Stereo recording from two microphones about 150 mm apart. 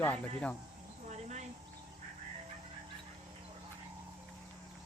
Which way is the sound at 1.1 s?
50° right (ahead or behind).